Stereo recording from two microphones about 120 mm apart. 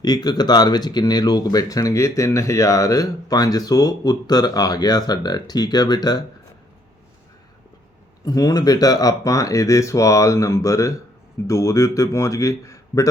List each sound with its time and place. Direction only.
0.0 s speech: 35° left (ahead or behind)
8.2 s speech: 30° left (ahead or behind)